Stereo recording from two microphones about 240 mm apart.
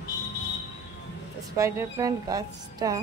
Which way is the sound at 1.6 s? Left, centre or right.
Centre.